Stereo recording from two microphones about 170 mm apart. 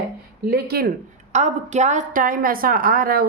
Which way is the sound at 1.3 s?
45° right (ahead or behind).